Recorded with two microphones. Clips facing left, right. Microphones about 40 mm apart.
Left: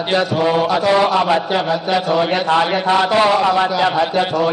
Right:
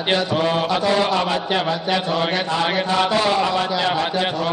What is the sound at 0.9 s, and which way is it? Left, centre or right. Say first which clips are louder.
Mantra: left 6 dB; centre.